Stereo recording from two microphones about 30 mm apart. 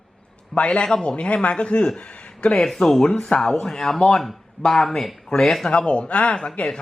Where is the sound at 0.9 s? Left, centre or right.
Left.